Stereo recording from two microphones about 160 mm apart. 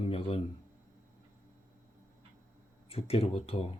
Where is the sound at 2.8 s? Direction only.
40° left (ahead or behind).